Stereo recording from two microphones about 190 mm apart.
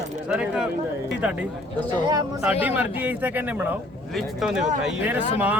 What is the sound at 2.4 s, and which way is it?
Speech, 10° right (ahead or behind).